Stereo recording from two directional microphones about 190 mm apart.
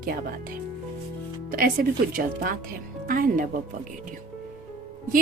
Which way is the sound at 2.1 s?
45° right (ahead or behind).